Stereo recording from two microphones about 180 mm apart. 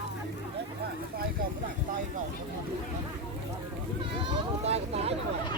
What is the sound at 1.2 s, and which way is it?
Speech, 50° right (ahead or behind).